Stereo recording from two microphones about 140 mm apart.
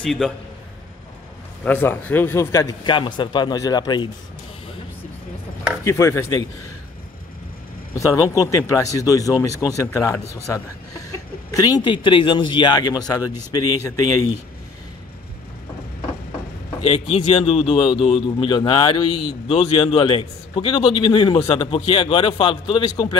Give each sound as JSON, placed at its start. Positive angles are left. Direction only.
{"t": 0.0, "sound": "a man's voice", "side_deg": 5}
{"t": 1.6, "sound": "a man's voice", "side_deg": 15}
{"t": 5.9, "sound": "a man's voice", "side_deg": 20}
{"t": 7.9, "sound": "a man's voice", "side_deg": 20}
{"t": 16.8, "sound": "speech", "side_deg": 45}